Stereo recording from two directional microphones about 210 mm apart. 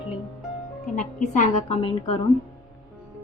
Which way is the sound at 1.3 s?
35° left (ahead or behind).